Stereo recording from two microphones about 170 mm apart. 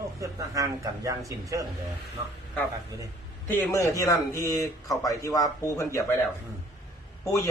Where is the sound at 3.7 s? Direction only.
20° left (ahead or behind).